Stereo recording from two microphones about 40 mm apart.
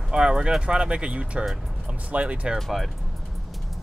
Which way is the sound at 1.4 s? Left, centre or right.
Centre.